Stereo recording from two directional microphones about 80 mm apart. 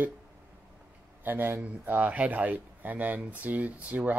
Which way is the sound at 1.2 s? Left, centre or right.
Right.